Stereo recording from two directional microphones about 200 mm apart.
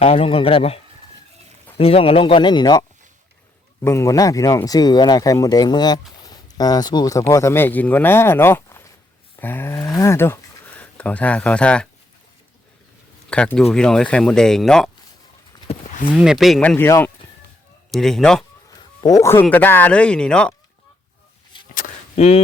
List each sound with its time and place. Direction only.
0.0 s speech: 30° left (ahead or behind)
1.8 s speech: 30° left (ahead or behind); by 8.9 s 10° left (ahead or behind)
9.3 s a sound: 10° left (ahead or behind)
10.0 s speech: 15° left (ahead or behind)
13.3 s speech: 5° left (ahead or behind)
15.6 s clip-clop: 35° left (ahead or behind)
16.1 s speech: centre (ahead or behind)
18.8 s speech: 20° left (ahead or behind)
21.8 s a sound: 35° left (ahead or behind)